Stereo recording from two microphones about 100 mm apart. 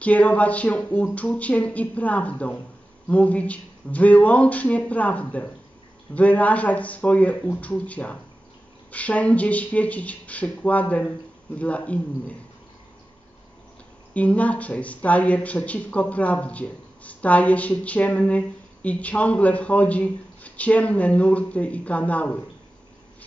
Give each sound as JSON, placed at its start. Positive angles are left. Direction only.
{"t": 0.0, "sound": "speech", "side_deg": 15}
{"t": 14.1, "sound": "speech", "side_deg": 15}